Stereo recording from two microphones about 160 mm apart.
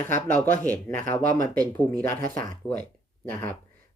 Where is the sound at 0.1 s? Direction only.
10° left (ahead or behind).